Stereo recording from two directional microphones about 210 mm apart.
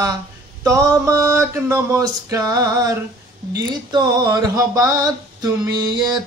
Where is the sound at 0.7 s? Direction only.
15° right (ahead or behind).